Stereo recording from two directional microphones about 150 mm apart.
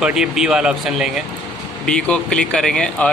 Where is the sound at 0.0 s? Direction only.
5° right (ahead or behind).